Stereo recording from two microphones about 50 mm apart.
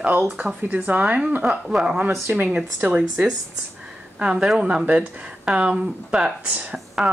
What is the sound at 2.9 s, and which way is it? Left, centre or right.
Speech, right.